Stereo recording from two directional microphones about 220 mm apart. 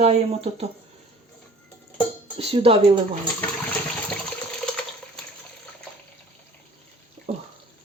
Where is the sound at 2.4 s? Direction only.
25° right (ahead or behind).